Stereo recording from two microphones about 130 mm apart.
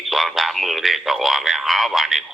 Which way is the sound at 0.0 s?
Centre (ahead or behind).